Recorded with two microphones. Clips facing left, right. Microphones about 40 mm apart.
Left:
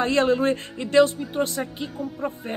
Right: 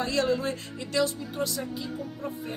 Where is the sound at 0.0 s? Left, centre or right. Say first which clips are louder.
Left 6 dB; left.